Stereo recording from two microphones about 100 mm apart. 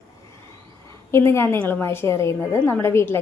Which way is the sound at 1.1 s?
25° left (ahead or behind).